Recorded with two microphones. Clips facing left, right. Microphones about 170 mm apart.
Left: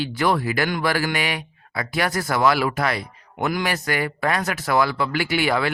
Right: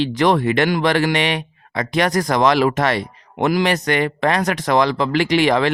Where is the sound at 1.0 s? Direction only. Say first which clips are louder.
Right 6 dB; 75° right (ahead or behind).